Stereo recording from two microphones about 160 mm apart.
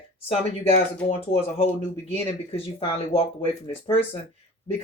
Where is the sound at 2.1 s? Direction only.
35° left (ahead or behind).